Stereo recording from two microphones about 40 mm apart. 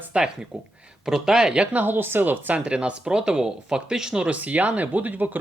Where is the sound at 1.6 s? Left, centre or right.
Right.